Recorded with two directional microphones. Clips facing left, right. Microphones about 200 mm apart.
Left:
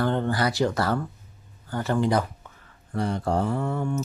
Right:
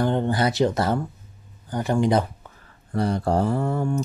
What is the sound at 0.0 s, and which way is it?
Speech, 15° right (ahead or behind).